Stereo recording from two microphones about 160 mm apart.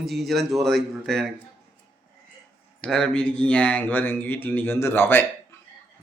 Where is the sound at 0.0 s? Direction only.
Centre (ahead or behind).